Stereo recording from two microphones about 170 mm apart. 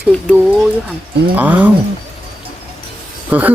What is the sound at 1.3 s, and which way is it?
Speech, 10° right (ahead or behind).